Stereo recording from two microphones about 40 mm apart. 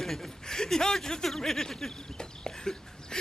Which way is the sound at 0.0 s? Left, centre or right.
Centre.